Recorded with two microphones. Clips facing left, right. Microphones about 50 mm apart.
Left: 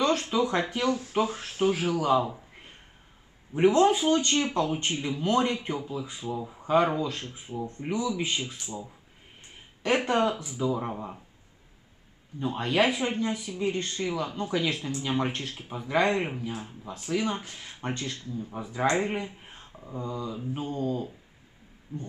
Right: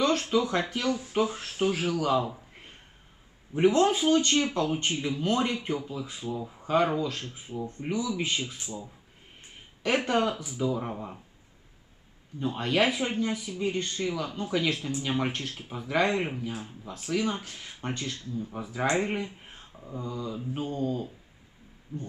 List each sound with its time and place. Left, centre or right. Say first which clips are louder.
0.2 s speech: even; centre
3.8 s speech: left 1 dB; centre
10.1 s speech: left 1 dB; centre
12.4 s speech: left 1 dB; centre
20.0 s mantra: left 2 dB; centre
20.2 s speech: even; centre